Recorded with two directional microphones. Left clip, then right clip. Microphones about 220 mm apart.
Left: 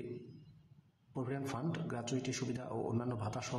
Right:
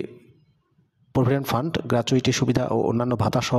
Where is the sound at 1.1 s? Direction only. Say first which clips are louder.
Right 18 dB; 45° right (ahead or behind).